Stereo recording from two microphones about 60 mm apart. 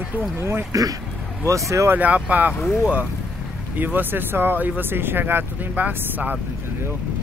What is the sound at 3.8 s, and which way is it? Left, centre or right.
Speech, right.